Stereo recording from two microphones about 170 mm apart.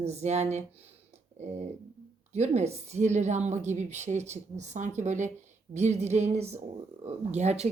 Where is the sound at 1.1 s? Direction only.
40° right (ahead or behind).